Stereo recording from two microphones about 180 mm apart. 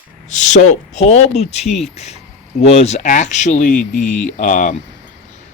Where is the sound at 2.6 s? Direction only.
35° left (ahead or behind).